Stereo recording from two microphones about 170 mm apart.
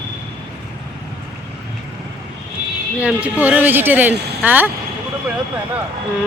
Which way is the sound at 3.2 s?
10° right (ahead or behind).